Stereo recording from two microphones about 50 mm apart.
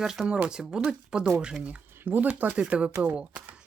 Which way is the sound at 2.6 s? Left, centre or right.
Right.